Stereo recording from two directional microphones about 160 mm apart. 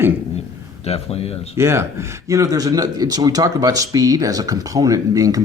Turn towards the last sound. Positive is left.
turn(degrees=-20)  # may be behind; listen again after turning